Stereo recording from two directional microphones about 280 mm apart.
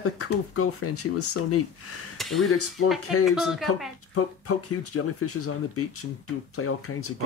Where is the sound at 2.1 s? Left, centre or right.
Centre.